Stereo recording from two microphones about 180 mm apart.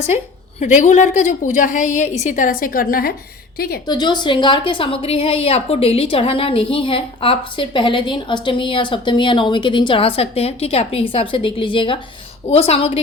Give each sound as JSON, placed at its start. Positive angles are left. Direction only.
{"t": 0.6, "sound": "a woman's voice", "side_deg": 40}
{"t": 3.8, "sound": "a woman's voice", "side_deg": 25}